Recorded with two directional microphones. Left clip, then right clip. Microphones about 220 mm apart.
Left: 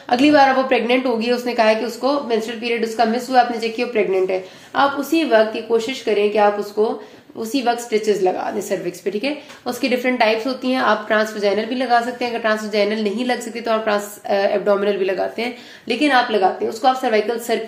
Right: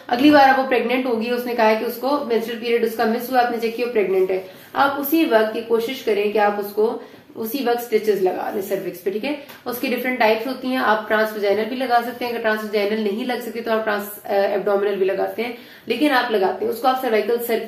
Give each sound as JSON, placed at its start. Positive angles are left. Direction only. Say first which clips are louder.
{"t": 0.1, "sound": "a woman's voice", "louder": "even", "side_deg": 40}